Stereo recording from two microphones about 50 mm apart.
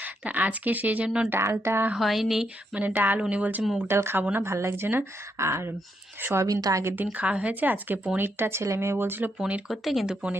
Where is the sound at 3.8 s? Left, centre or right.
Right.